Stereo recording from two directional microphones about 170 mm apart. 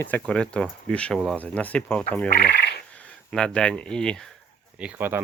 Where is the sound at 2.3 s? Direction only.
70° left (ahead or behind).